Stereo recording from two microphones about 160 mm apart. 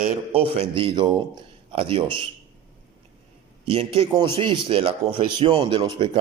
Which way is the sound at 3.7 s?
35° right (ahead or behind).